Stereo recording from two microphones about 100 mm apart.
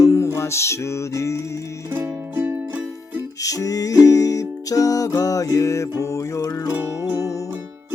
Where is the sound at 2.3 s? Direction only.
20° right (ahead or behind).